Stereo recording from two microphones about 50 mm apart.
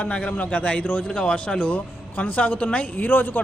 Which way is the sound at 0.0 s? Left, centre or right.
Left.